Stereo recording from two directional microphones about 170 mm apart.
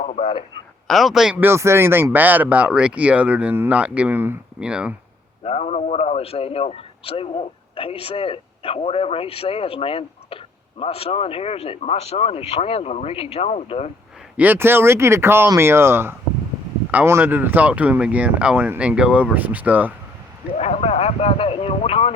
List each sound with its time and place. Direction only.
0.0 s a man's voice: 45° left (ahead or behind)
0.9 s speech: centre (ahead or behind)
5.4 s a man's voice: 40° left (ahead or behind)
14.3 s speech: 10° right (ahead or behind)
20.6 s a man's voice: 40° left (ahead or behind)